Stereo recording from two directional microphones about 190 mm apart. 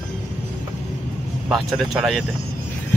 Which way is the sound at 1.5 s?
Centre (ahead or behind).